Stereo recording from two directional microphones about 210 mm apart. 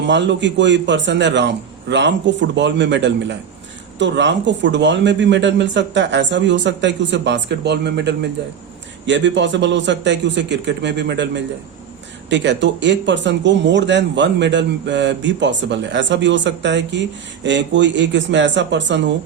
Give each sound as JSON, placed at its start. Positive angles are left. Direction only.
{"t": 0.0, "sound": "speech", "side_deg": -55}